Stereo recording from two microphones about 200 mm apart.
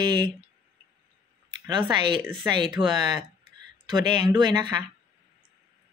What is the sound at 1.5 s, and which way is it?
Speech, 20° right (ahead or behind).